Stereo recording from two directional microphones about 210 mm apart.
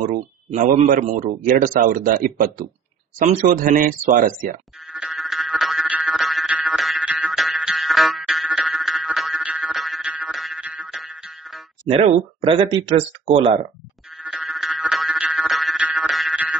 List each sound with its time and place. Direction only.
0.0 s a man's voice: 35° right (ahead or behind)
4.9 s music: centre (ahead or behind)
11.9 s speech: 25° right (ahead or behind)
14.2 s music: centre (ahead or behind)